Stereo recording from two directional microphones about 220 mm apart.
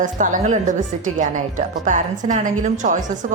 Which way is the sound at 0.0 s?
35° right (ahead or behind).